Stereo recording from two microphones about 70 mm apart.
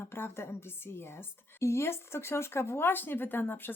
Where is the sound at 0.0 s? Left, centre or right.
Left.